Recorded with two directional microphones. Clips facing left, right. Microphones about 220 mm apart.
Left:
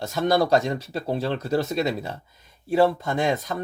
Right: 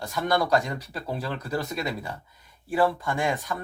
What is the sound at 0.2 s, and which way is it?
Speech, 25° left (ahead or behind).